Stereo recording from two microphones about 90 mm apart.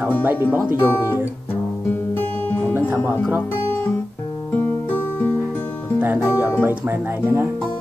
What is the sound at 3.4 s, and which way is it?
Music, 25° left (ahead or behind).